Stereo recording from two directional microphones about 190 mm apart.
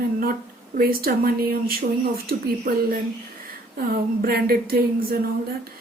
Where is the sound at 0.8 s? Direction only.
50° right (ahead or behind).